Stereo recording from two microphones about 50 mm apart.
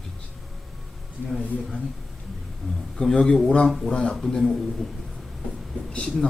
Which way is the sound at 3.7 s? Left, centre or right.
Centre.